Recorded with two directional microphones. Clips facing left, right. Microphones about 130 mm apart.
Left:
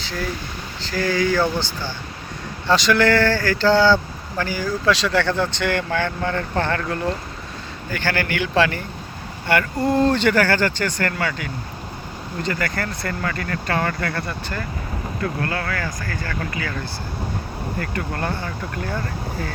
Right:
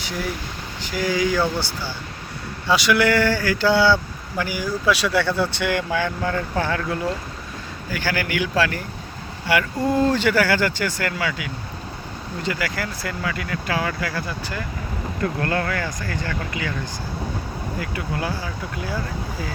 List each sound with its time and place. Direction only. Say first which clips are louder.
0.8 s speech: left 1 dB; 15° right (ahead or behind)
15.2 s speech: right 2 dB; 30° right (ahead or behind)
17.7 s speech: left 1 dB; 5° right (ahead or behind)